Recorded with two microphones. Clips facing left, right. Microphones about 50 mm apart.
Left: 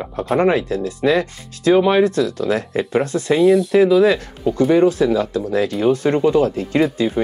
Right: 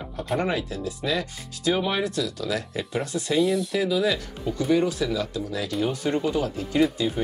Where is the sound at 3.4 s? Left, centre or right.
Centre.